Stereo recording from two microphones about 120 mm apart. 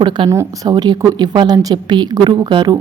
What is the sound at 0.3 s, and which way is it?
A woman's voice, 25° right (ahead or behind).